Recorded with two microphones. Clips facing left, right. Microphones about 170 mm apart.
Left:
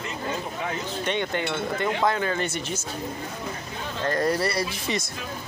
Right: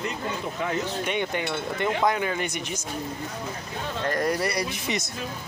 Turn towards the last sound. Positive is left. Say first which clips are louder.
# left 1 dB
turn(degrees=-20)  # may be behind; listen again after turning